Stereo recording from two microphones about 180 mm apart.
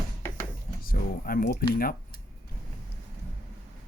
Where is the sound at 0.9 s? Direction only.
55° left (ahead or behind).